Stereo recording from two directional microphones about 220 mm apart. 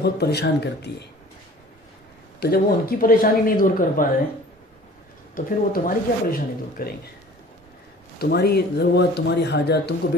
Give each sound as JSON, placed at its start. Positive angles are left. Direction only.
{"t": 0.0, "sound": "speech", "side_deg": 50}
{"t": 2.4, "sound": "speech", "side_deg": 45}
{"t": 5.3, "sound": "speech", "side_deg": 40}
{"t": 8.2, "sound": "speech", "side_deg": 45}